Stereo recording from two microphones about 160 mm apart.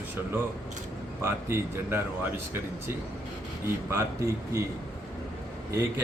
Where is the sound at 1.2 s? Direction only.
15° right (ahead or behind).